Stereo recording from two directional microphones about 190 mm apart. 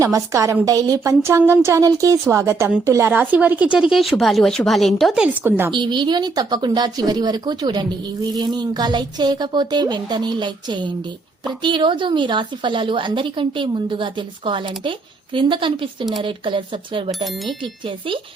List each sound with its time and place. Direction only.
0.0 s a woman's voice: 15° right (ahead or behind)
5.7 s speech: 25° right (ahead or behind)
17.2 s speech: centre (ahead or behind)
17.6 s speech: 25° right (ahead or behind)